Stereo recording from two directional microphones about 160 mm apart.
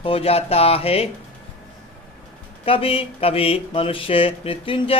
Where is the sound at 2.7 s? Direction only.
35° left (ahead or behind).